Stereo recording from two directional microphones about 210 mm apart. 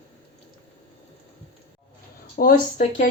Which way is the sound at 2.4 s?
40° left (ahead or behind).